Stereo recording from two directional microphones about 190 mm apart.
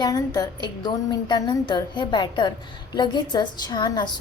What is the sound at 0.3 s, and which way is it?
A woman's voice, 20° left (ahead or behind).